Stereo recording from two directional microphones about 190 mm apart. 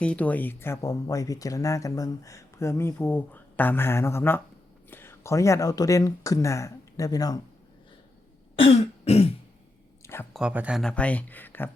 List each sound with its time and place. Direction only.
0.0 s speech: 5° left (ahead or behind)
8.6 s throat clearing: 30° left (ahead or behind)
10.0 s a sound: 15° left (ahead or behind)
10.3 s speech: 5° right (ahead or behind); by 11.7 s 10° left (ahead or behind)